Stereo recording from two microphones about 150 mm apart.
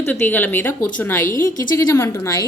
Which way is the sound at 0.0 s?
15° left (ahead or behind).